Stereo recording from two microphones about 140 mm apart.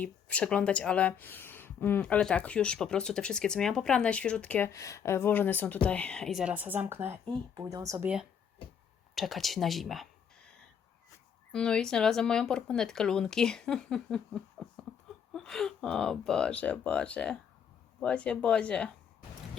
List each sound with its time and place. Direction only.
0.0 s speech: 10° left (ahead or behind)
4.7 s a woman's voice: 20° left (ahead or behind); by 8.1 s 20° right (ahead or behind)
9.1 s speech: centre (ahead or behind)
11.5 s speech: 5° left (ahead or behind)